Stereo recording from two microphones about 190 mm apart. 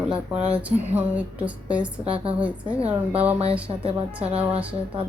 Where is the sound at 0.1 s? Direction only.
30° right (ahead or behind).